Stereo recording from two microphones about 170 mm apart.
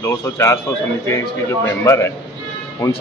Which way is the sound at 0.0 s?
15° left (ahead or behind).